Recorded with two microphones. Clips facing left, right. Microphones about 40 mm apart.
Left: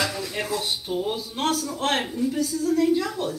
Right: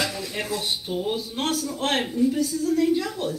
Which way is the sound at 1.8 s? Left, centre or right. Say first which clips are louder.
Right 1 dB; right.